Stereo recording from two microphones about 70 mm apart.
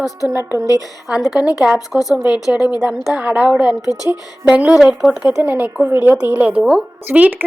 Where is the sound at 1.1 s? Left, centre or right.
Centre.